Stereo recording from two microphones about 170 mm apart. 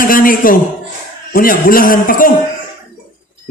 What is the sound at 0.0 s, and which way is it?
A man's voice, 55° left (ahead or behind).